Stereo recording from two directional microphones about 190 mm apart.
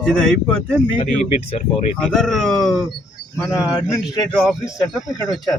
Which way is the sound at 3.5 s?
15° left (ahead or behind).